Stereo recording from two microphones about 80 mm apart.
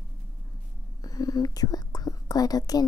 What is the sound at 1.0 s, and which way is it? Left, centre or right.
Speech, left.